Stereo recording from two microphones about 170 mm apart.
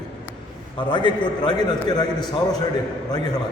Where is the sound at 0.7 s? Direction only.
25° left (ahead or behind).